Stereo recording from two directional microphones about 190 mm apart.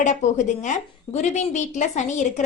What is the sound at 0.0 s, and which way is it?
A woman's voice, 40° left (ahead or behind).